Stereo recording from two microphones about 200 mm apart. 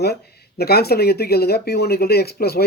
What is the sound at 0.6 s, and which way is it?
Speech, 50° left (ahead or behind).